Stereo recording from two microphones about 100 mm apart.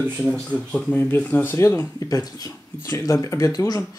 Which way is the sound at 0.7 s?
15° left (ahead or behind).